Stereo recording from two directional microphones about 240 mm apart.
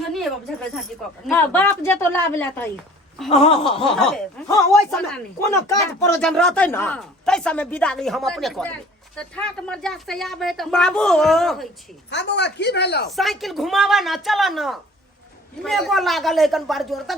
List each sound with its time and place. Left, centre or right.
0.1 s a sound: centre
1.3 s speech: centre
3.2 s a sound: left
4.4 s speech: centre
12.1 s speech: left
13.1 s speech: centre